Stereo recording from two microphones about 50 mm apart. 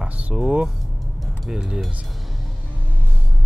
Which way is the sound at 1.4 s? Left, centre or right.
Centre.